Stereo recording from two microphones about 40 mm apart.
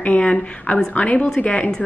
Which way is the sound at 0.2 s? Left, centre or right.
Left.